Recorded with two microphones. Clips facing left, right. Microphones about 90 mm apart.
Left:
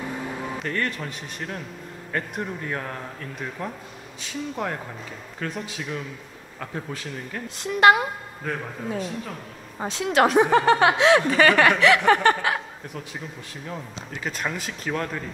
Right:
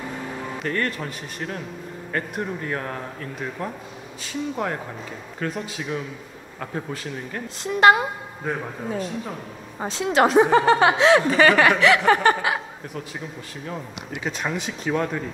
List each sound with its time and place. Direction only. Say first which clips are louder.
0.0 s speech: left 1 dB; centre (ahead or behind)
2.1 s chuckle: right 2 dB; centre (ahead or behind)
7.4 s a woman's voice: right 1 dB; 35° right (ahead or behind)
7.9 s chuckle: right 1 dB; centre (ahead or behind)
10.1 s a woman's voice: right 2 dB; 30° right (ahead or behind)
10.4 s chuckle: right 1 dB; centre (ahead or behind)